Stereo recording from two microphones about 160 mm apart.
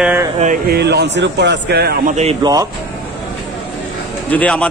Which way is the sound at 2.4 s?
25° right (ahead or behind).